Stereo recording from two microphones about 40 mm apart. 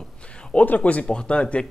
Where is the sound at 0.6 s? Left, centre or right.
Left.